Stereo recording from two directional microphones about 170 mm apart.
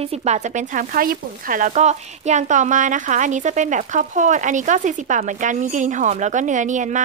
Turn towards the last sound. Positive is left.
turn(degrees=-45)  # may be behind; listen again after turning